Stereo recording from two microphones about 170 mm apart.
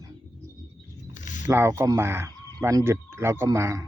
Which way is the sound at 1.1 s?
45° left (ahead or behind).